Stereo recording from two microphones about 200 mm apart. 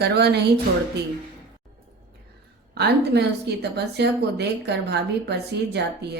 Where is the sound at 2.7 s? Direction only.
55° right (ahead or behind).